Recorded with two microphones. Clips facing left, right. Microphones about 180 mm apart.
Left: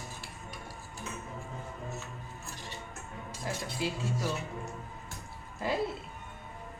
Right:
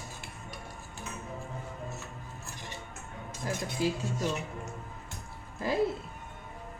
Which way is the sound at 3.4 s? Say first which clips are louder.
Right 4 dB; 40° right (ahead or behind).